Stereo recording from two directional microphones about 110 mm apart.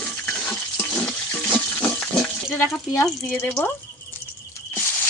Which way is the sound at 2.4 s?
20° left (ahead or behind).